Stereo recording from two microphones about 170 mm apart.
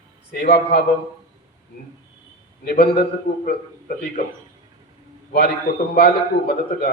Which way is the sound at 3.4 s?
55° left (ahead or behind).